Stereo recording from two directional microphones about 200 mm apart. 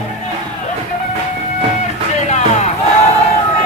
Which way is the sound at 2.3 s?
35° left (ahead or behind).